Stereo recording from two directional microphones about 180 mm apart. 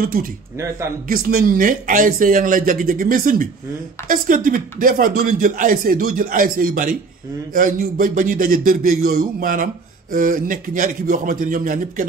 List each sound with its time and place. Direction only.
0.0 s speech: 50° right (ahead or behind)